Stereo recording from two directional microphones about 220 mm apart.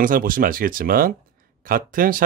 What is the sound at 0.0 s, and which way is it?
Speech, 40° right (ahead or behind).